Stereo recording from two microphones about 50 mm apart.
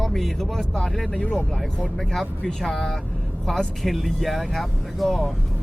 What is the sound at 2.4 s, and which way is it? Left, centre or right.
Speech, centre.